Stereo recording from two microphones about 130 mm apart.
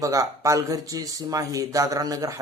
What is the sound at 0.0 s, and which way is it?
Speech, 25° right (ahead or behind).